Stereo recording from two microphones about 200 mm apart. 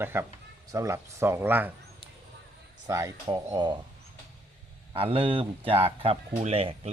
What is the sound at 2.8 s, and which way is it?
Speech, 15° right (ahead or behind).